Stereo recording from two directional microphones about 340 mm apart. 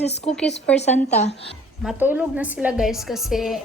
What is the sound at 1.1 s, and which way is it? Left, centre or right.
Speech, centre.